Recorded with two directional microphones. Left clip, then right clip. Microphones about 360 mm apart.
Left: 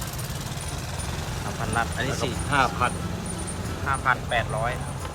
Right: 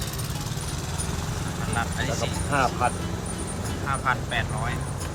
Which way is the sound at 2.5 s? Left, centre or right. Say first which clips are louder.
Left 1 dB; centre.